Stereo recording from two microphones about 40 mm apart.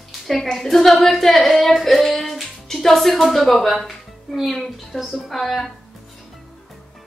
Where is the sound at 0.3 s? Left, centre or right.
Centre.